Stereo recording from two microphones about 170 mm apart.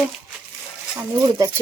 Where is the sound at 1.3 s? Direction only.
20° right (ahead or behind).